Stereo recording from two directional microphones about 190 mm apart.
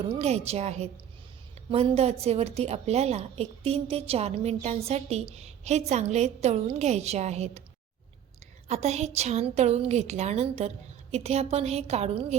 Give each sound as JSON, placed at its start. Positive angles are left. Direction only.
{"t": 0.1, "sound": "a woman's voice", "side_deg": -35}
{"t": 8.6, "sound": "a woman's voice", "side_deg": -35}